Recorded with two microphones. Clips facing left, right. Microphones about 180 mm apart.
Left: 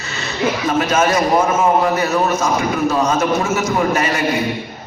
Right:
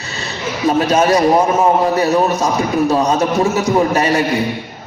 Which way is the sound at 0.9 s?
35° right (ahead or behind).